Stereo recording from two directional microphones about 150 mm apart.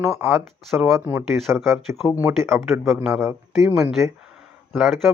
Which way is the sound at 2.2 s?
15° right (ahead or behind).